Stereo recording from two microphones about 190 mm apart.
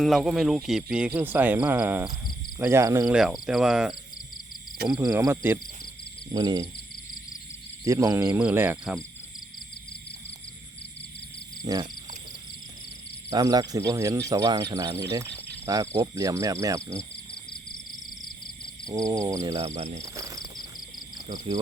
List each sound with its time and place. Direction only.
0.0 s speech: centre (ahead or behind); by 3.1 s 15° right (ahead or behind)
3.1 s speech: 5° right (ahead or behind)
4.9 s speech: 15° right (ahead or behind)
7.9 s speech: 15° right (ahead or behind)
11.6 s speech: 20° right (ahead or behind)
13.3 s speech: 20° right (ahead or behind)
18.9 s speech: 20° right (ahead or behind)
19.5 s speech: 35° right (ahead or behind)
20.0 s cricket: 20° right (ahead or behind)